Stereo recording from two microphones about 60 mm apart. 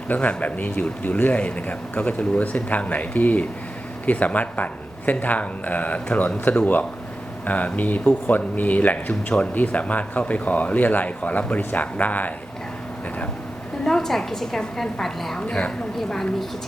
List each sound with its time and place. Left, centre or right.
0.1 s speech: centre
13.8 s a woman's voice: centre
15.4 s speech: left
16.0 s a woman's voice: centre